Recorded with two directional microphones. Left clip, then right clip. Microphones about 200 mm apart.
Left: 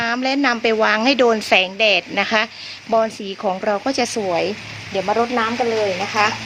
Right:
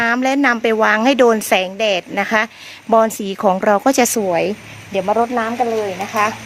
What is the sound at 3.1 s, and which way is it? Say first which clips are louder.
Speech: right 6 dB; 55° right (ahead or behind).